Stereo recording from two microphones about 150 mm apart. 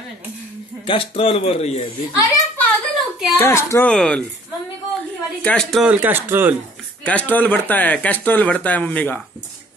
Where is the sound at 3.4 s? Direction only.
20° left (ahead or behind).